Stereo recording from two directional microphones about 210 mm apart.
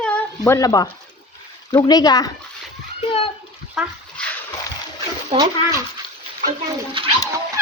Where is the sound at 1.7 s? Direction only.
20° left (ahead or behind).